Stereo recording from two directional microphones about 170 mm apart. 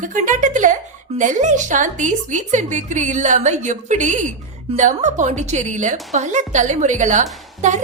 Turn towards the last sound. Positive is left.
turn(degrees=-45)  # may be behind; listen again after turning